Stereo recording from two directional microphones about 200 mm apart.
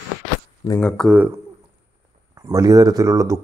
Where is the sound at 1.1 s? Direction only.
10° right (ahead or behind).